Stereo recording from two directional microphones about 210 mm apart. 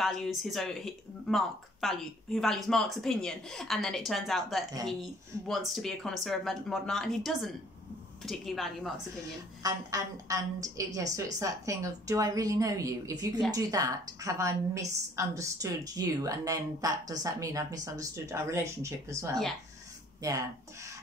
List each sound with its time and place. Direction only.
0.0 s speech: centre (ahead or behind)
9.6 s a woman's voice: 15° right (ahead or behind)
20.2 s speech: 15° right (ahead or behind)